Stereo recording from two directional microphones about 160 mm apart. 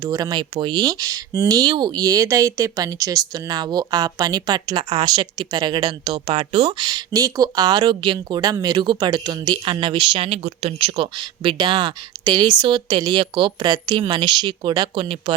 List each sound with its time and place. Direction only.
0.0 s speech: 25° right (ahead or behind)